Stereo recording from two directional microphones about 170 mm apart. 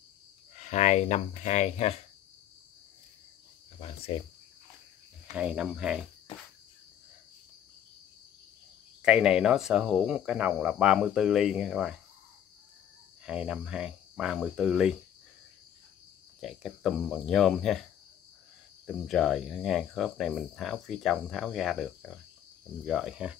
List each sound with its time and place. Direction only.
0.6 s speech: 45° left (ahead or behind)
3.8 s cricket: 35° left (ahead or behind)
5.3 s speech: 5° right (ahead or behind)
9.0 s speech: 5° right (ahead or behind)
13.2 s speech: 5° right (ahead or behind)
16.3 s speech: centre (ahead or behind)
18.9 s speech: centre (ahead or behind)